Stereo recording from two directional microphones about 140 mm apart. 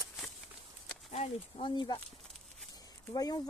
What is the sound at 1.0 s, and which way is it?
Speech, 45° left (ahead or behind).